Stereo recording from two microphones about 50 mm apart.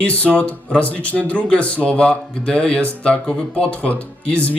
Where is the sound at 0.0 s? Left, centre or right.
Left.